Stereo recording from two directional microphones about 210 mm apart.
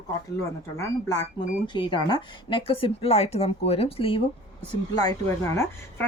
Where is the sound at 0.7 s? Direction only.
15° left (ahead or behind).